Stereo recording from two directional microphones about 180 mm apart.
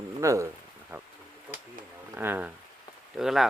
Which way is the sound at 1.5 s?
10° right (ahead or behind).